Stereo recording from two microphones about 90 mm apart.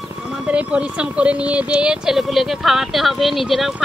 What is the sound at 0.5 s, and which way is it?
A woman's voice, 15° right (ahead or behind).